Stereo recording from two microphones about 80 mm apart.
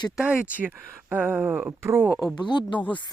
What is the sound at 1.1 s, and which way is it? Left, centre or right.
Speech, right.